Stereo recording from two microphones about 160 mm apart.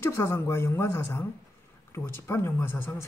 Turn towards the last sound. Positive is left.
turn(degrees=15)  # may be behind; listen again after turning